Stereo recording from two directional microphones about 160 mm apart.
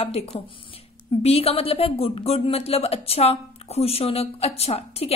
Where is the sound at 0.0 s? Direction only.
40° left (ahead or behind).